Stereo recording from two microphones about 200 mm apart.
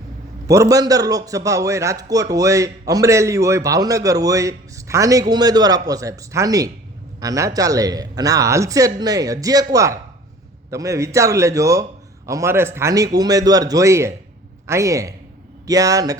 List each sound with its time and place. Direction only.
0.4 s a man's voice: 15° right (ahead or behind)